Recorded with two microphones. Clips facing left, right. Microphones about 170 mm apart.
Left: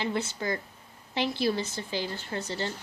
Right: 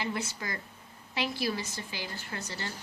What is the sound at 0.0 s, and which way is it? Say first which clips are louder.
A woman's voice: left 4 dB; 25° left (ahead or behind).